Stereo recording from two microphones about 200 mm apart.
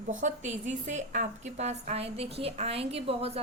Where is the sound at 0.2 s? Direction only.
35° right (ahead or behind).